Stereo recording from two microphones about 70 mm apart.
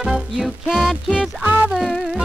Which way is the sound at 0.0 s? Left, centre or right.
Centre.